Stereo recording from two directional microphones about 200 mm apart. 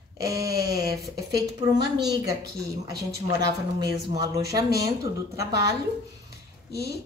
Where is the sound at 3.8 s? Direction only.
20° right (ahead or behind).